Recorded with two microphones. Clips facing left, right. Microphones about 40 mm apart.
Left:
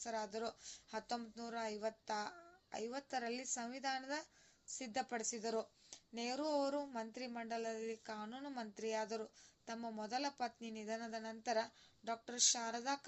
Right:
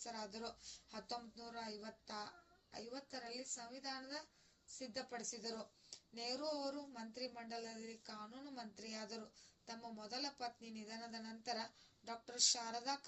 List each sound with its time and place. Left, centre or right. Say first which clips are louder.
0.0 s a woman's voice: left 6 dB; left
7.3 s speech: left 6 dB; left